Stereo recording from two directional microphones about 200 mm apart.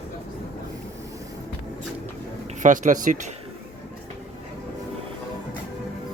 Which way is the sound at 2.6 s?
40° right (ahead or behind).